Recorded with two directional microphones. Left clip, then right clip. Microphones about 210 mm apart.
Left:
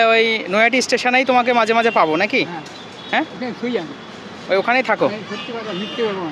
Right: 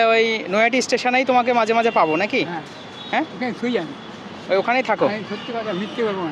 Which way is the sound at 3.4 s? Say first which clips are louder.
Even; 5° right (ahead or behind).